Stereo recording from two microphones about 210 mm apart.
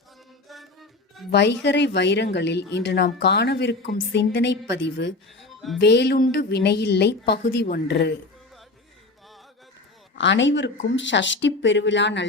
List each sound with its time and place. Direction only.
0.4 s music: centre (ahead or behind)
1.3 s a woman's voice: 55° left (ahead or behind)
5.4 s music: centre (ahead or behind)
5.8 s a woman's voice: 50° left (ahead or behind)
10.2 s a woman's voice: 60° left (ahead or behind)